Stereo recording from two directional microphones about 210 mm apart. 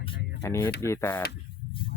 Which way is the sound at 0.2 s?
55° left (ahead or behind).